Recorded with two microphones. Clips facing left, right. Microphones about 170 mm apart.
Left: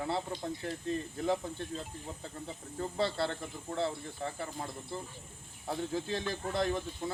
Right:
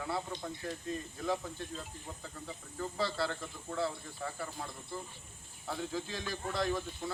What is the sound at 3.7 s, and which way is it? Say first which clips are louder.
Speech: left 2 dB; 25° left (ahead or behind).